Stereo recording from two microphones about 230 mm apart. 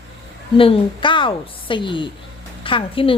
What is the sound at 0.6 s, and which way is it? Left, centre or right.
A woman's voice, left.